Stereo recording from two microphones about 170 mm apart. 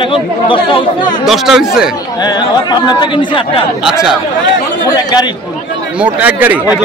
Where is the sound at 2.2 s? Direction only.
25° left (ahead or behind).